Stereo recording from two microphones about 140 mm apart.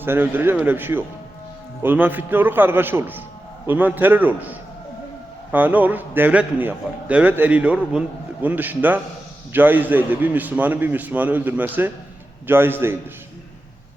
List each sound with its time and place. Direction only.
0.0 s a man's voice: 15° right (ahead or behind)